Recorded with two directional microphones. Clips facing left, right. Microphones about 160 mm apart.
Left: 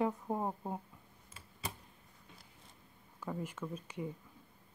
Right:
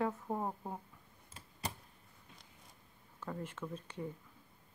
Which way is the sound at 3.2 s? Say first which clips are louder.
Left 2 dB; 10° left (ahead or behind).